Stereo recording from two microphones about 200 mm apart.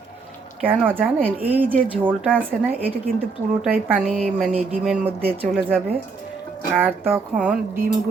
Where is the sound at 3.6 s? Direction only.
5° right (ahead or behind).